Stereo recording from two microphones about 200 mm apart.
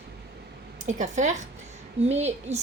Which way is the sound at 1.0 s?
35° right (ahead or behind).